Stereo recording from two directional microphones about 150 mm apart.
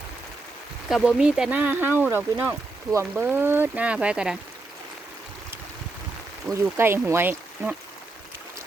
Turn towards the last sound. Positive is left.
turn(degrees=-10)  # may be behind; listen again after turning